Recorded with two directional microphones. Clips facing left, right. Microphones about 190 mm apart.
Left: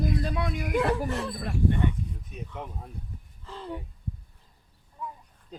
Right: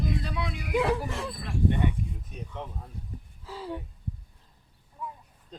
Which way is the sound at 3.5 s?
5° right (ahead or behind).